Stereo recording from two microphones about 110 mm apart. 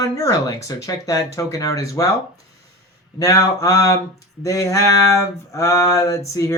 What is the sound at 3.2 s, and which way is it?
Speech, 30° left (ahead or behind).